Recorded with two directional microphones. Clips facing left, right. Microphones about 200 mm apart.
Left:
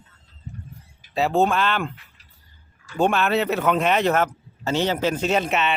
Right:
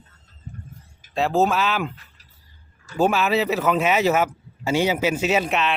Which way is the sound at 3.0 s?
5° right (ahead or behind).